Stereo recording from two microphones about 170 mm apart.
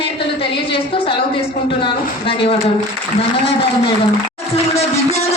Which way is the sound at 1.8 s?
30° left (ahead or behind).